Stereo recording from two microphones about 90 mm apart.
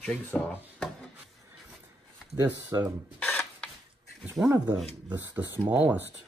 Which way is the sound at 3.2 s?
10° left (ahead or behind).